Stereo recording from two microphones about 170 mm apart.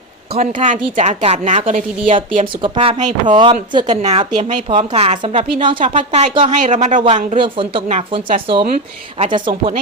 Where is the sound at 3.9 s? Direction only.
40° right (ahead or behind).